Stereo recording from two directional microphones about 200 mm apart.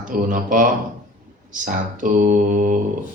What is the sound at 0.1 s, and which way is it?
Speech, 40° right (ahead or behind).